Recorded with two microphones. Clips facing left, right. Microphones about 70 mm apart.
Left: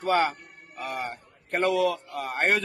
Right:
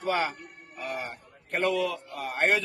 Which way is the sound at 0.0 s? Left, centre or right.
Left.